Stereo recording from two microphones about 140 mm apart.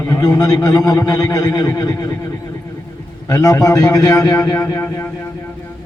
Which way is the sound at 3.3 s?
25° left (ahead or behind).